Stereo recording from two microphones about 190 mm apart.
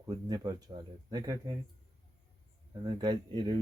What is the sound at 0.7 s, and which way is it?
Speech, 25° right (ahead or behind).